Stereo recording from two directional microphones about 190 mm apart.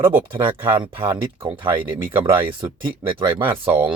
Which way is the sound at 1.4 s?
25° right (ahead or behind).